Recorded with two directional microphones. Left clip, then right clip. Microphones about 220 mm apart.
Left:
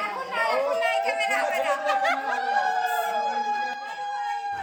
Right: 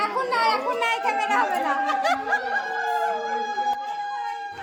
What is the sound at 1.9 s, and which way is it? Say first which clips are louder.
Chuckle: even; 40° right (ahead or behind).